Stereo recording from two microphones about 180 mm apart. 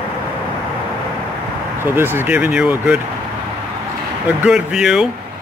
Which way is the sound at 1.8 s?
10° right (ahead or behind).